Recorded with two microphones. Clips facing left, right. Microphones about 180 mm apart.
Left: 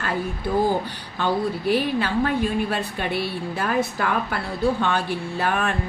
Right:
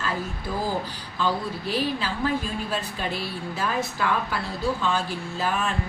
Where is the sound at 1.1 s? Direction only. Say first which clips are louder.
Left 4 dB; 60° left (ahead or behind).